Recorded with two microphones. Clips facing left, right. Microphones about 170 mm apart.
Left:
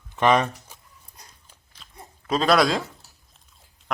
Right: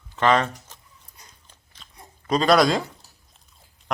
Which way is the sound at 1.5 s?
Centre (ahead or behind).